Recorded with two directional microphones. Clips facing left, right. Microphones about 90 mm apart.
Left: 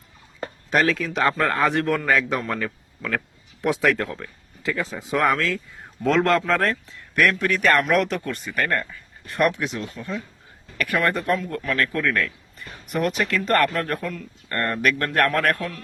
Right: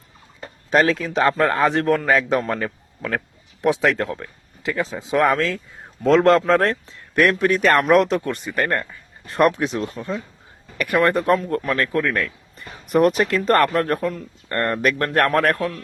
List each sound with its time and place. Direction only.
0.7 s a man's voice: 30° right (ahead or behind)